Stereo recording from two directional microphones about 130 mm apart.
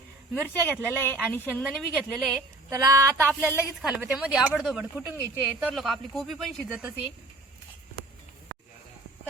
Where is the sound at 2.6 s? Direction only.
25° right (ahead or behind).